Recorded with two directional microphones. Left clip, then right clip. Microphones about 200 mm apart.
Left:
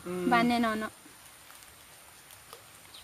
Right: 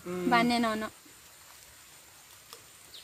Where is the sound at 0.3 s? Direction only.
Centre (ahead or behind).